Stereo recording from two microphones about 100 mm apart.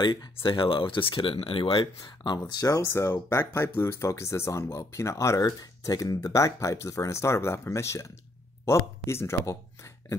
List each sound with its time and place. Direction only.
0.0 s speech: 45° left (ahead or behind)
0.4 s speech: 60° left (ahead or behind)
2.8 s speech: 25° left (ahead or behind)